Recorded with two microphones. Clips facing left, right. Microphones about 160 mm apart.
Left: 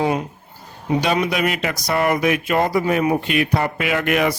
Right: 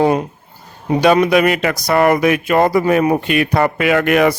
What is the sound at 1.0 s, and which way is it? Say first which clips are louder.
Speech: right 10 dB; 55° right (ahead or behind).